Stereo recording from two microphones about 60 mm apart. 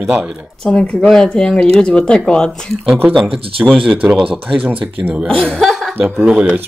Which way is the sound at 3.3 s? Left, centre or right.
Centre.